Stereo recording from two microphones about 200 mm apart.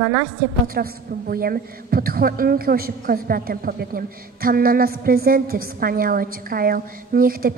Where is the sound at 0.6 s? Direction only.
45° right (ahead or behind).